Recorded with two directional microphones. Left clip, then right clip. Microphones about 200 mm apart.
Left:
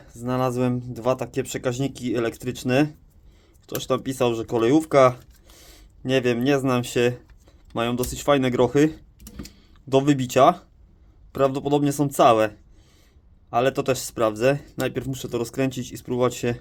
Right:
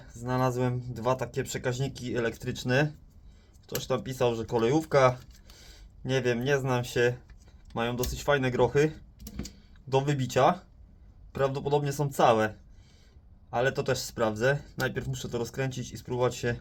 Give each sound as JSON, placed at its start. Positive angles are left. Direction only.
{"t": 0.2, "sound": "speech", "side_deg": 45}
{"t": 13.5, "sound": "speech", "side_deg": 50}